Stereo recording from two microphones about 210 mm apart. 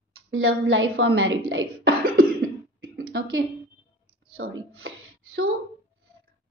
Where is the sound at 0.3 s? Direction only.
80° right.